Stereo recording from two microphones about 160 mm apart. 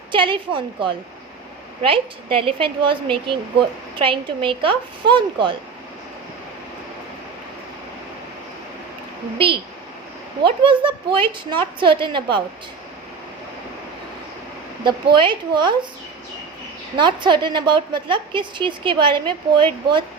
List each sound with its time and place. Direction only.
0.1 s a woman's voice: 30° right (ahead or behind)
10.4 s a woman's voice: 30° right (ahead or behind)
14.8 s a woman's voice: 30° right (ahead or behind)
17.0 s a woman's voice: 30° right (ahead or behind)